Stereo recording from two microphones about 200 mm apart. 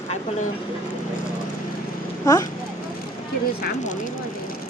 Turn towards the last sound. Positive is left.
turn(degrees=40)  # may be behind; listen again after turning